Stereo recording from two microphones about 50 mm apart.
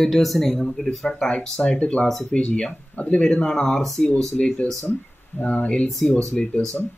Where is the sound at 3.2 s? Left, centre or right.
Centre.